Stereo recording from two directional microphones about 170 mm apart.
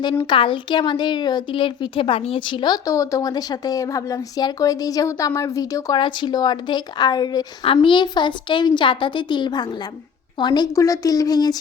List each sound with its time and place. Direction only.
0.0 s a woman's voice: 30° left (ahead or behind)